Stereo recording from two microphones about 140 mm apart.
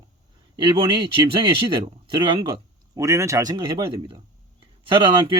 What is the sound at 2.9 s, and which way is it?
Speech, 20° right (ahead or behind).